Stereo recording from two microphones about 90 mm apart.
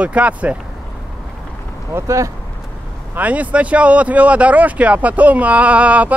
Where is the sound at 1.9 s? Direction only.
35° right (ahead or behind).